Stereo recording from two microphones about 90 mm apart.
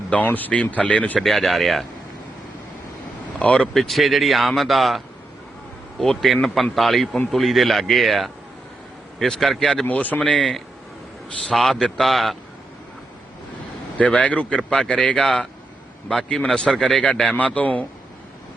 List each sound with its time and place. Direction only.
0.1 s speech: 20° left (ahead or behind)
1.2 s speech: centre (ahead or behind)
3.3 s speech: 10° left (ahead or behind)
3.8 s speech: centre (ahead or behind)
9.8 s speech: 20° left (ahead or behind)
10.2 s speech: 5° left (ahead or behind)
14.0 s speech: 15° left (ahead or behind)